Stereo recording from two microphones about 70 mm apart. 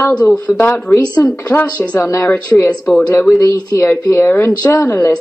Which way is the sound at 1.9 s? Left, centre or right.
Left.